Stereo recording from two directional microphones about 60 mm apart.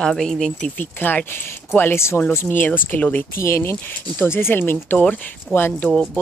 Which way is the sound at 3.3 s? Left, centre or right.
Left.